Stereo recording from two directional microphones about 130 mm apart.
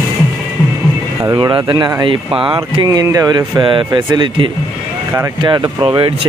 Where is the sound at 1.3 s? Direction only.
35° right (ahead or behind).